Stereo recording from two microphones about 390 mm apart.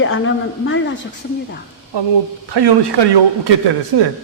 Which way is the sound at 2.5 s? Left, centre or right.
Right.